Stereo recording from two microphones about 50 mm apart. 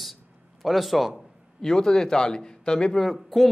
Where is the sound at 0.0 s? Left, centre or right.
Centre.